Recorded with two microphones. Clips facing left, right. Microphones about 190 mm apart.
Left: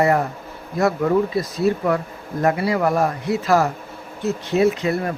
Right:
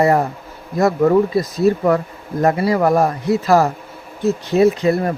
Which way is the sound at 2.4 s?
40° right (ahead or behind).